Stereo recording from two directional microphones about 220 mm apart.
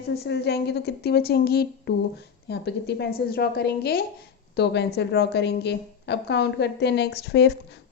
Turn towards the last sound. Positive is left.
turn(degrees=50)  # may be behind; listen again after turning